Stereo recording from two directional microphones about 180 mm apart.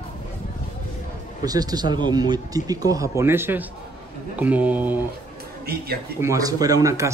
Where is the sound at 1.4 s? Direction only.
20° right (ahead or behind).